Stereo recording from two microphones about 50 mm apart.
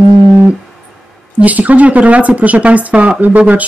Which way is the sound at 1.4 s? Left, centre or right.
Right.